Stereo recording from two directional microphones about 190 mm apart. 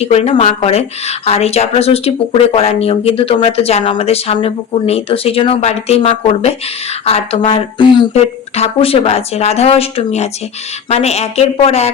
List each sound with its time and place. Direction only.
0.0 s speech: 35° left (ahead or behind)